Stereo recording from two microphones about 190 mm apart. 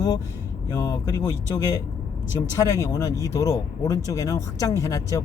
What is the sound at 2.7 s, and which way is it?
Speech, 15° left (ahead or behind).